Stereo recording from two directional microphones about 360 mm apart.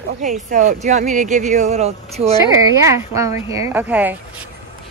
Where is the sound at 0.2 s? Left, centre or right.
Right.